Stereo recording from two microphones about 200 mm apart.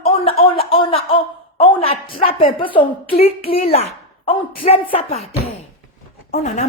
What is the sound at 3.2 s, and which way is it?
A child's voice, 30° left (ahead or behind).